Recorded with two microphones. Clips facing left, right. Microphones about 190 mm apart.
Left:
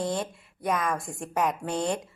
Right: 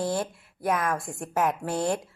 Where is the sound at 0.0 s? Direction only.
5° right (ahead or behind).